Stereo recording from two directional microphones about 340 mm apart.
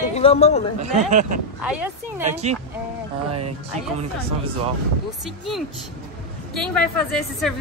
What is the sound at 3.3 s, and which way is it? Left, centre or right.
Speech, right.